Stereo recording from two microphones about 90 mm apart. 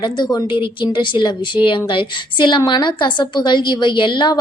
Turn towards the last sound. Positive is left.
turn(degrees=60)  # may be behind; listen again after turning